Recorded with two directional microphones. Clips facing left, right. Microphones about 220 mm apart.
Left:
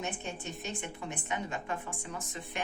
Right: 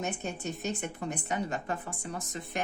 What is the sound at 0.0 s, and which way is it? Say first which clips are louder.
A woman's voice: right 4 dB; 40° right (ahead or behind).